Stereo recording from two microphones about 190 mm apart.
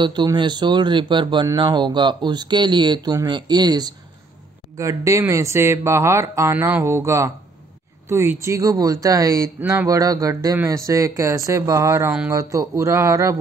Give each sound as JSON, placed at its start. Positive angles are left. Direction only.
{"t": 0.0, "sound": "speech", "side_deg": -25}